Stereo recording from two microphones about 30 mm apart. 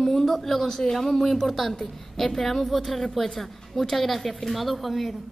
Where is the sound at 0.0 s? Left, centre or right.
Centre.